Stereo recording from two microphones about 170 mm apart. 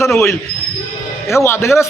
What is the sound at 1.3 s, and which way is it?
Speech, 15° left (ahead or behind).